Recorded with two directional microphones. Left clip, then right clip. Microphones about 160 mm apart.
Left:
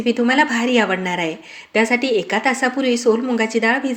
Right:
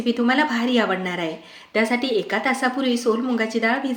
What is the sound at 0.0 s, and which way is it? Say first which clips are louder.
A woman's voice: left 4 dB; 15° left (ahead or behind).